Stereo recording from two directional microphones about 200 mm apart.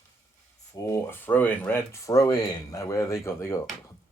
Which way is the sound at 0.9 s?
10° left (ahead or behind).